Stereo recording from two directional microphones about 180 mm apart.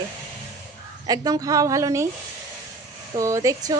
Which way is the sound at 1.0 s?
20° right (ahead or behind).